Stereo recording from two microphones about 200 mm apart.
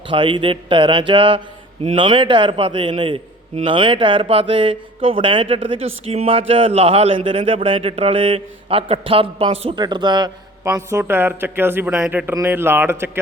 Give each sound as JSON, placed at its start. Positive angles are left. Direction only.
{"t": 0.1, "sound": "speech", "side_deg": -25}